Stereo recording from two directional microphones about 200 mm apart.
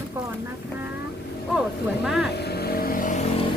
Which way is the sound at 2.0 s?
Centre (ahead or behind).